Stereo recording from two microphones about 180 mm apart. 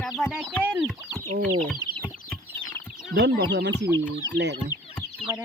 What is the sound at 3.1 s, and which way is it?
Speech, 65° right (ahead or behind).